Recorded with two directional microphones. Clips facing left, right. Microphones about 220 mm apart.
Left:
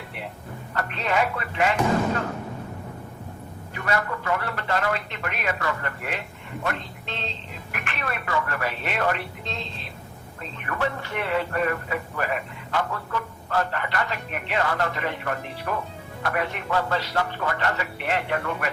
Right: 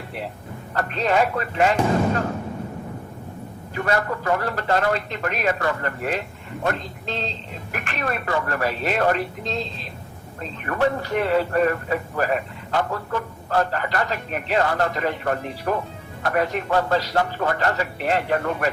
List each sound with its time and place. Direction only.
0.7 s speech: 35° right (ahead or behind)
3.8 s speech: 40° right (ahead or behind)